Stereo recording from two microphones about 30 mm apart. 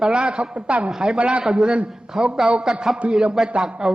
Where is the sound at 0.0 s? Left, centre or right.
Right.